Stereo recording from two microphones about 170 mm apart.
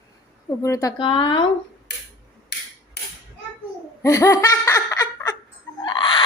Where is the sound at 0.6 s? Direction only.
20° left (ahead or behind).